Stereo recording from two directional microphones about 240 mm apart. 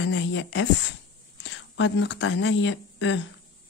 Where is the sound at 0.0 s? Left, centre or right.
Left.